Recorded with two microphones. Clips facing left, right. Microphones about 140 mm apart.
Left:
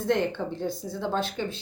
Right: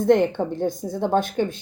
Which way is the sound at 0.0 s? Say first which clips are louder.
Right 8 dB; 50° right (ahead or behind).